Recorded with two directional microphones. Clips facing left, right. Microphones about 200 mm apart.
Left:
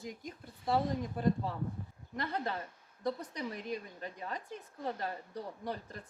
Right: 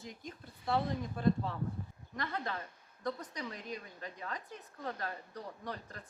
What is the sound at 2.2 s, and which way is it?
Speech, 30° left (ahead or behind).